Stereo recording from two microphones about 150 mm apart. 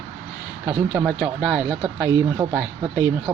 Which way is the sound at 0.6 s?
30° right (ahead or behind).